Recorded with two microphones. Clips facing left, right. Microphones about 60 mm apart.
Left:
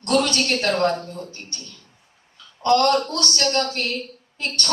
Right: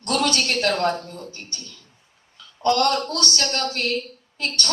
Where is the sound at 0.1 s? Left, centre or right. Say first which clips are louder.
Left 2 dB; left.